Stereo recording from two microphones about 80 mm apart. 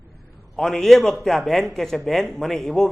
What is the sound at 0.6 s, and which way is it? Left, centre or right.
A man's voice, centre.